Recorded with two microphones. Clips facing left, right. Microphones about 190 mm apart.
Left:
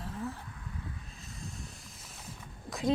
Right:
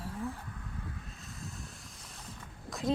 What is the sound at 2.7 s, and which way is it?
Walk, centre (ahead or behind).